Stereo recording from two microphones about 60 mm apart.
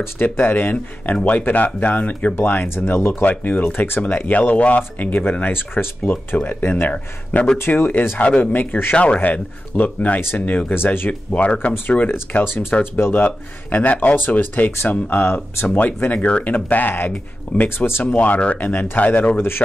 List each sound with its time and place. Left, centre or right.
0.0 s speech: left
6.9 s speech: centre; by 8.9 s left
8.9 s speech: left
12.1 s speech: left
18.0 s speech: left